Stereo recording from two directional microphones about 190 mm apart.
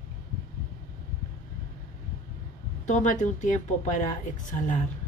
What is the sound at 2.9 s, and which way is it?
Speech, 40° left (ahead or behind).